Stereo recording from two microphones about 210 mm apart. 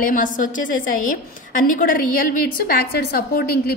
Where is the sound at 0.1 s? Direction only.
40° left (ahead or behind).